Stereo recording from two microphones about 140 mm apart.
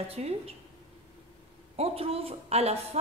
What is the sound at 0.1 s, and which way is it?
Speech, 45° right (ahead or behind).